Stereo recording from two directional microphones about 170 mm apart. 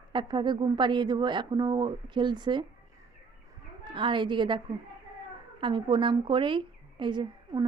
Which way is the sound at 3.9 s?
30° right (ahead or behind).